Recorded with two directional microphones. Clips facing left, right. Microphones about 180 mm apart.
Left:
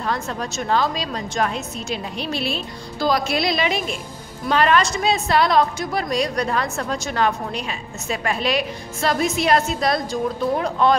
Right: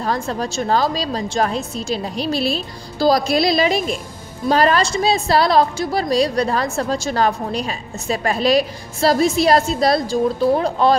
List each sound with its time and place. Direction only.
0.0 s a woman's voice: 35° right (ahead or behind)